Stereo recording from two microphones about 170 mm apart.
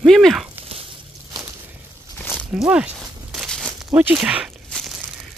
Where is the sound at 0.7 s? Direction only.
35° right (ahead or behind).